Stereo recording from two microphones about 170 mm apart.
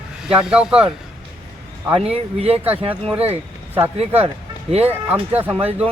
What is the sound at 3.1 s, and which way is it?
Speech, 10° right (ahead or behind).